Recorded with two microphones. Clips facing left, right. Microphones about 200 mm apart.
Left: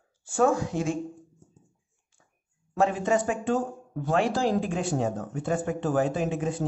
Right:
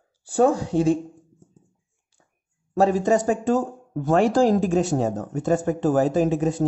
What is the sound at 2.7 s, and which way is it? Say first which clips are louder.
Speech: right 5 dB; 40° right (ahead or behind).